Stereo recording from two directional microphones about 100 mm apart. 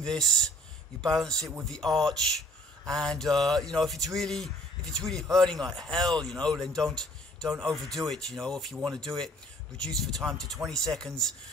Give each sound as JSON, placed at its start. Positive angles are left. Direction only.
{"t": 0.0, "sound": "speech", "side_deg": 5}